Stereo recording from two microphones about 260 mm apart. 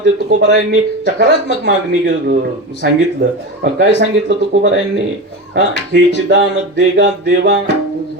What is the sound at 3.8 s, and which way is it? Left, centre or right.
Speech, right.